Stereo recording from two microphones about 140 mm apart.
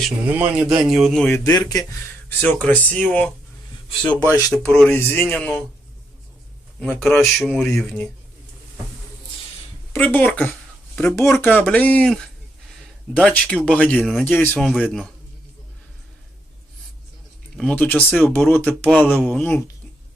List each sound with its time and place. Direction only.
0.3 s a man's voice: 10° right (ahead or behind)
1.3 s speech: 20° left (ahead or behind)
2.4 s speech: 10° left (ahead or behind)
4.0 s speech: 10° left (ahead or behind)
4.9 s speech: 15° left (ahead or behind)
6.7 s a man's voice: 5° left (ahead or behind)
7.2 s speech: centre (ahead or behind)
9.9 s speech: 15° left (ahead or behind)
17.6 s speech: 10° left (ahead or behind)